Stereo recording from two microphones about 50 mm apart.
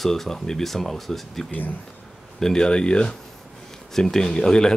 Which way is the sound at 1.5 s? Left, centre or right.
Left.